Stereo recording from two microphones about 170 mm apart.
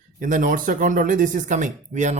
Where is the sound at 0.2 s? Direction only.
50° right (ahead or behind).